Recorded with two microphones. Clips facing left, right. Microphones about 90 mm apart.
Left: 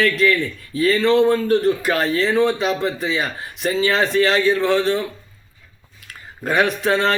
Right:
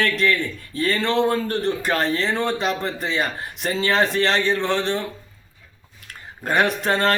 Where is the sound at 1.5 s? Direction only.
5° left (ahead or behind).